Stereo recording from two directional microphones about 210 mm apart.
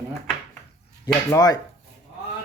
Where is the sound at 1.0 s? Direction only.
15° left (ahead or behind).